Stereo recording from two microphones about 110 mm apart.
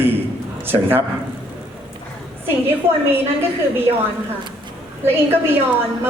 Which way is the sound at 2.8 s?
20° right (ahead or behind).